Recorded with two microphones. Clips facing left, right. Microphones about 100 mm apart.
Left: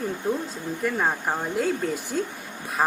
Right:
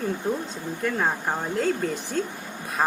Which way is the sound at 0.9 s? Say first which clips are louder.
Even; 5° left (ahead or behind).